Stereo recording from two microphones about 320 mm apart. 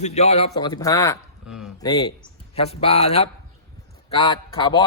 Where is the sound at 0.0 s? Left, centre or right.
Left.